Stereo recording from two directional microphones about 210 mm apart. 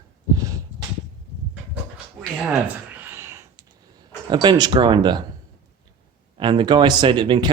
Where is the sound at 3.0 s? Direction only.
10° right (ahead or behind).